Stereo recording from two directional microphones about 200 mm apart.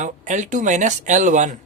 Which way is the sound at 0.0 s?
35° right (ahead or behind).